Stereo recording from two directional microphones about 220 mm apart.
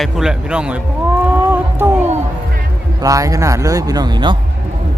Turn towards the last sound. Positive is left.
turn(degrees=-20)  # may be behind; listen again after turning